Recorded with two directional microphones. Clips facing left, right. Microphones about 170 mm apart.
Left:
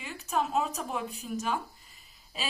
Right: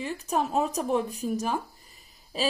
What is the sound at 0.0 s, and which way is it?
Speech, 40° right (ahead or behind).